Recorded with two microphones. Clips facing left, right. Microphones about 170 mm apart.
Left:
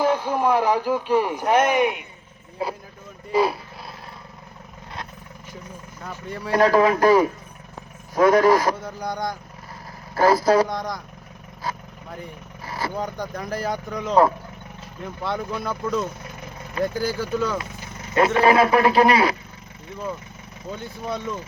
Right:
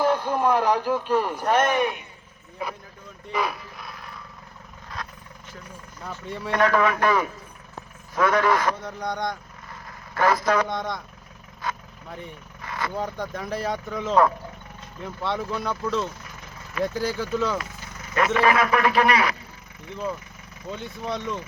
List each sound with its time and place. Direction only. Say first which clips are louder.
0.0 s a man's voice: left 1 dB; 10° left (ahead or behind)
2.6 s a man's voice: left 5 dB; 30° left (ahead or behind)
3.3 s dog: left 7 dB; 30° left (ahead or behind)
6.0 s speech: even; 5° left (ahead or behind)
6.5 s a man's voice: left 4 dB; 35° left (ahead or behind)
8.8 s speech: left 1 dB; centre (ahead or behind)
10.2 s a man's voice: left 5 dB; 35° left (ahead or behind)
10.7 s speech: left 1 dB; centre (ahead or behind)
11.6 s speech: left 1 dB; 30° left (ahead or behind)
13.0 s speech: left 1 dB; centre (ahead or behind)
18.3 s a man's voice: left 4 dB; 30° left (ahead or behind)
20.7 s speech: left 1 dB; centre (ahead or behind)